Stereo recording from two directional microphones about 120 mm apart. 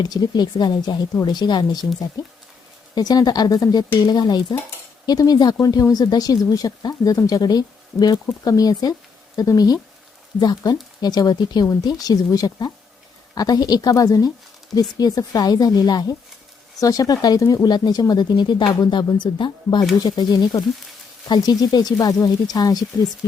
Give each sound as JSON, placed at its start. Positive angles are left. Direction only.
{"t": 0.0, "sound": "speech", "side_deg": 35}
{"t": 2.9, "sound": "speech", "side_deg": 35}